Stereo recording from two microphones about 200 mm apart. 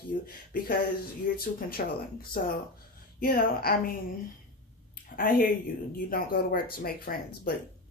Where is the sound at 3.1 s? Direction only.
50° left (ahead or behind).